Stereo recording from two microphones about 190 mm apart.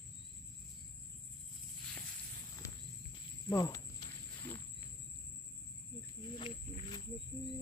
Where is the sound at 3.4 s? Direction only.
20° left (ahead or behind).